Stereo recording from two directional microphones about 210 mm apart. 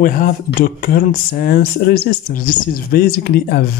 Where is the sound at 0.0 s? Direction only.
40° left (ahead or behind).